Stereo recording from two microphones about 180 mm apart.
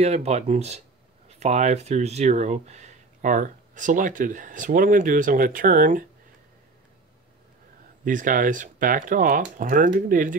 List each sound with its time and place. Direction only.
0.0 s speech: 35° right (ahead or behind)
8.0 s speech: 45° right (ahead or behind)